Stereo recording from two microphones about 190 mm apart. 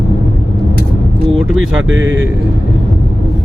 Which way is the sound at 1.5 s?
90° right.